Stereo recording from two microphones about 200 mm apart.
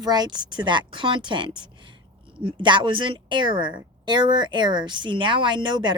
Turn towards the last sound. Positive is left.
turn(degrees=-25)  # may be behind; listen again after turning